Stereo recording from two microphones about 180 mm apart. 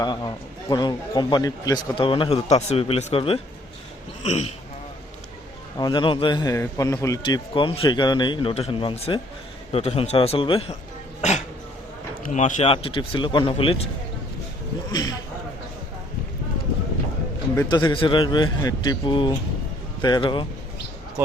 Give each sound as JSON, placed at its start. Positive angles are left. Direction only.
{"t": 0.0, "sound": "a man's voice", "side_deg": 25}
{"t": 5.7, "sound": "a man's voice", "side_deg": 25}
{"t": 17.5, "sound": "a man's voice", "side_deg": 20}